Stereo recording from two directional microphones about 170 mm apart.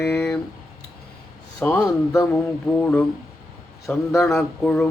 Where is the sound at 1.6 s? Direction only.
10° left (ahead or behind).